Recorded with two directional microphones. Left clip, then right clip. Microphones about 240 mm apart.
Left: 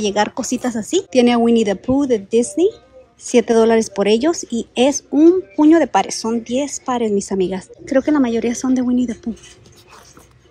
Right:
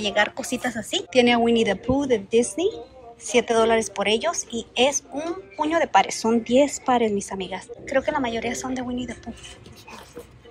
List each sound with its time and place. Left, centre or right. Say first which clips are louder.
0.0 s a woman's voice: left 4 dB; left